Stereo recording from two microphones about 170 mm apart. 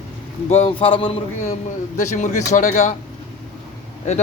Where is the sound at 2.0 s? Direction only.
45° left (ahead or behind).